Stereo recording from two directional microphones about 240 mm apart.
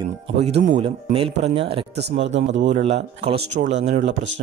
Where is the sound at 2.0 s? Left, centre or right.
Right.